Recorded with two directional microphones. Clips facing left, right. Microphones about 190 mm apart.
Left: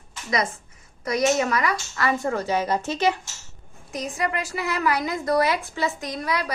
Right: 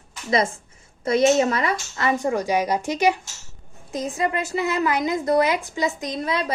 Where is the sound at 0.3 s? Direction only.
30° right (ahead or behind).